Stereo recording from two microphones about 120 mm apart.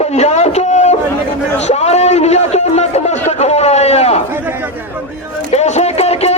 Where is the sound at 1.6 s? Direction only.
65° left (ahead or behind).